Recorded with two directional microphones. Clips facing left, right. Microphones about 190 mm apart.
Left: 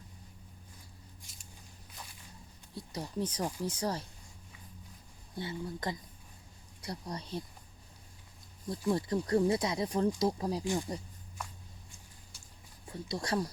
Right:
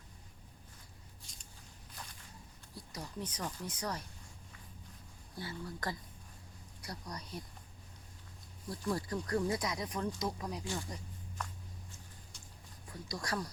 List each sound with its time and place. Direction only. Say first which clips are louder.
1.2 s a sound: left 1 dB; 5° left (ahead or behind)
2.7 s speech: left 7 dB; 30° left (ahead or behind)
5.4 s speech: left 4 dB; 20° left (ahead or behind)
8.9 s speech: left 6 dB; 25° left (ahead or behind)
10.6 s speech: left 7 dB; 20° left (ahead or behind)
11.4 s walk: even; 10° left (ahead or behind)
12.9 s speech: left 5 dB; 25° left (ahead or behind)